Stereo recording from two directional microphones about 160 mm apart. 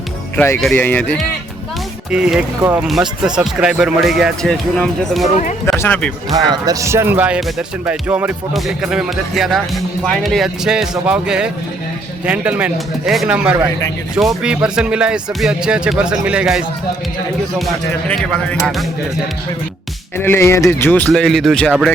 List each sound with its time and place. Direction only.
0.3 s speech: 15° left (ahead or behind)
2.0 s speech: 5° right (ahead or behind)
6.3 s speech: 25° right (ahead or behind); by 16.6 s 5° right (ahead or behind)
18.1 s speech: 5° left (ahead or behind)
20.1 s speech: 15° left (ahead or behind)
21.1 s speech: centre (ahead or behind)